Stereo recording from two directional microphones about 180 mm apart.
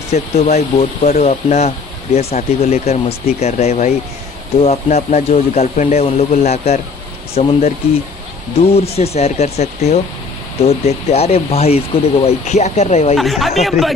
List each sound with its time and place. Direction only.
0.1 s speech: 40° left (ahead or behind)
8.5 s speech: 35° left (ahead or behind)
13.1 s speech: centre (ahead or behind)